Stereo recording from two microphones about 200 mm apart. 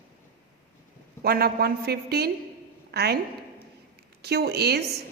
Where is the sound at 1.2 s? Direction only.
50° right (ahead or behind).